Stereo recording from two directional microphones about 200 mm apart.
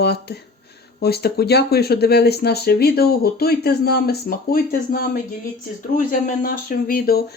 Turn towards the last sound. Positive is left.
turn(degrees=50)  # may be behind; listen again after turning